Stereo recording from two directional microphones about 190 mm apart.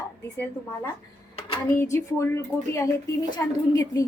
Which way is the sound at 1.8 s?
15° left (ahead or behind).